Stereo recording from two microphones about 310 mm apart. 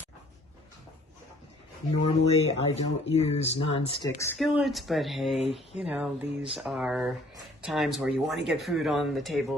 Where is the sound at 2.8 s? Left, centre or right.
Centre.